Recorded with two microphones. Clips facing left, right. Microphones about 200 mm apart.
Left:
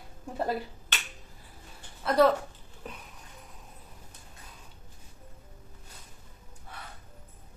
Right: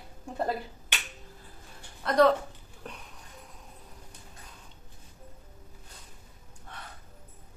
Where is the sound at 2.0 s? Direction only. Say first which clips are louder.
Even; 5° left (ahead or behind).